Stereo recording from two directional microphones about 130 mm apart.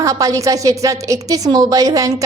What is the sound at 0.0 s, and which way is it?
Speech, 25° right (ahead or behind).